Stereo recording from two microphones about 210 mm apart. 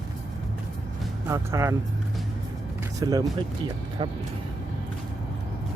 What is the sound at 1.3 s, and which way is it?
Speech, 15° right (ahead or behind).